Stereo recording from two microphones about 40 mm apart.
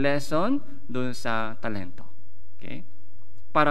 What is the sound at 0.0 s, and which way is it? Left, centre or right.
A man's voice, centre.